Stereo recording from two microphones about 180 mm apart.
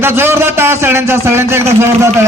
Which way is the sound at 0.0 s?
15° right (ahead or behind).